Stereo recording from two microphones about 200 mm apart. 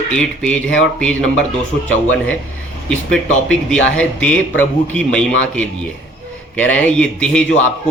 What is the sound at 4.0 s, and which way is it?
A man's voice, 5° left (ahead or behind).